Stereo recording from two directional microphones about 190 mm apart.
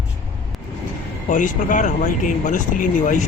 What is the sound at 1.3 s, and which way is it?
Speech, 40° left (ahead or behind).